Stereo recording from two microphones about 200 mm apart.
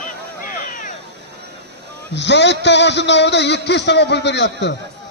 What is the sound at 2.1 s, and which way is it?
A man's voice, 60° left (ahead or behind).